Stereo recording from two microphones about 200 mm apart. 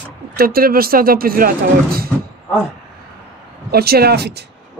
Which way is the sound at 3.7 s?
50° right (ahead or behind).